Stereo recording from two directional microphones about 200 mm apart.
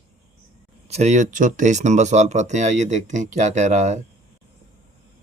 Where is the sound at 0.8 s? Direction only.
35° right (ahead or behind).